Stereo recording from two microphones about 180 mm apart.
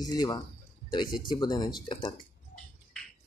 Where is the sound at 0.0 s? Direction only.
20° left (ahead or behind).